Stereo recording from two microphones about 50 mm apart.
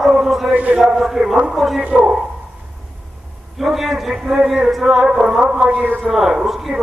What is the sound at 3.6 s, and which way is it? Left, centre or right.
A man's voice, centre.